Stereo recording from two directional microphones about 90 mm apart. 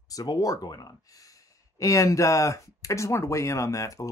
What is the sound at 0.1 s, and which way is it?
Speech, 45° left (ahead or behind).